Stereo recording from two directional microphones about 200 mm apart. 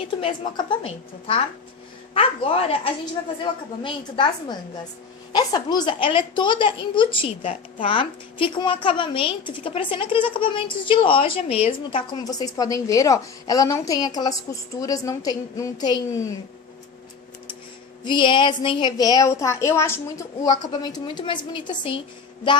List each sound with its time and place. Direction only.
0.1 s a woman's voice: 25° left (ahead or behind)
2.1 s a woman's voice: 30° left (ahead or behind)
18.0 s a woman's voice: 25° left (ahead or behind)